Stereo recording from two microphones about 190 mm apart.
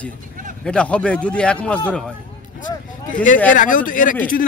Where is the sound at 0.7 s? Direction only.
5° left (ahead or behind).